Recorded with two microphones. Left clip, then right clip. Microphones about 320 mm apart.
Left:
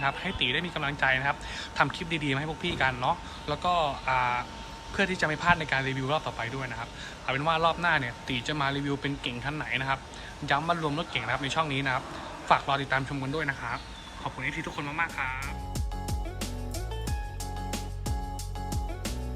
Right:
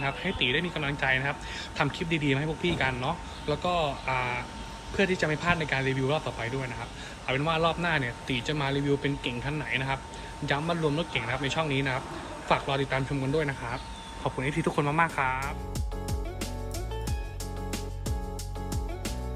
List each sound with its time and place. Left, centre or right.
0.3 s speech: centre